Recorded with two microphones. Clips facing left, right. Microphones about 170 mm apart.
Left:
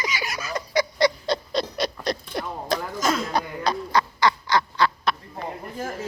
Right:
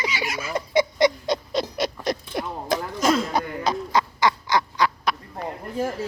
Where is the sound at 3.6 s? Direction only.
20° right (ahead or behind).